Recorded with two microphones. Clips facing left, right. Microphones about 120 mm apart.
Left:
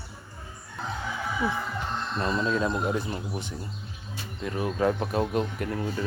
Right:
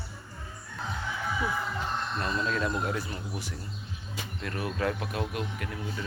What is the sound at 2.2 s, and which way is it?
Speech, 25° left (ahead or behind).